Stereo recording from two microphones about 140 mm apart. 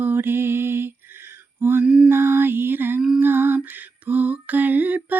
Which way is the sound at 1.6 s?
15° right (ahead or behind).